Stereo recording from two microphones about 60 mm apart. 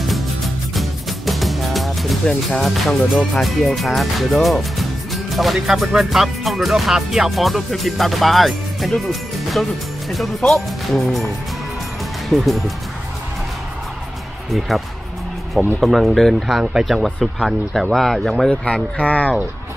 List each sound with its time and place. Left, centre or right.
0.7 s music: centre
2.6 s speech: centre
12.3 s speech: centre
15.8 s speech: centre
18.5 s speech: left